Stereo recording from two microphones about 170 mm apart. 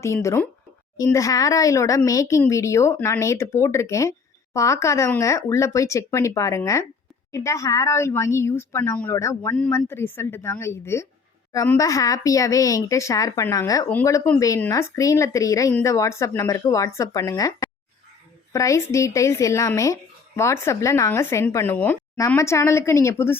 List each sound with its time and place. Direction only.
0.0 s speech: 15° left (ahead or behind)